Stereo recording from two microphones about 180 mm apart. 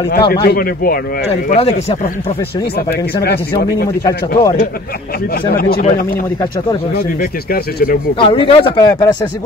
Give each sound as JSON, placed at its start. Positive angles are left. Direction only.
{"t": 0.1, "sound": "speech", "side_deg": 60}
{"t": 1.5, "sound": "speech", "side_deg": 35}
{"t": 2.9, "sound": "speech", "side_deg": 65}
{"t": 5.5, "sound": "speech", "side_deg": 55}
{"t": 7.0, "sound": "speech", "side_deg": 55}
{"t": 8.2, "sound": "speech", "side_deg": 30}